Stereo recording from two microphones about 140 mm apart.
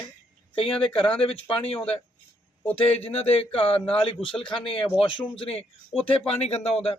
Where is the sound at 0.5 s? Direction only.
40° left (ahead or behind).